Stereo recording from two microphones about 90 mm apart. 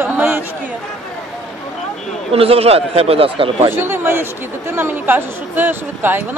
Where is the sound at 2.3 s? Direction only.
90° right.